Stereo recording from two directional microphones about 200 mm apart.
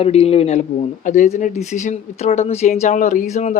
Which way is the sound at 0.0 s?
30° left (ahead or behind).